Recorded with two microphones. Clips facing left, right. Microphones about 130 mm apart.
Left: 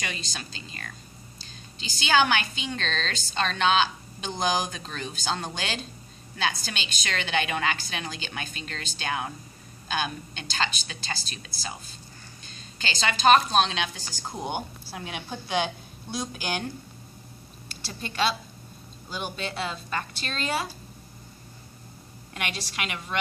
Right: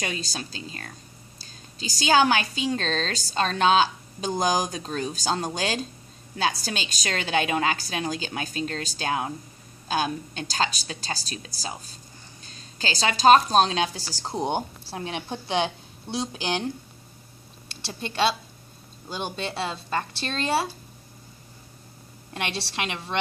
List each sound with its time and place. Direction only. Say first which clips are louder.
1.4 s a woman's voice: right 5 dB; 40° right (ahead or behind)
17.6 s a woman's voice: right 3 dB; 25° right (ahead or behind)
22.3 s a woman's voice: right 3 dB; 30° right (ahead or behind)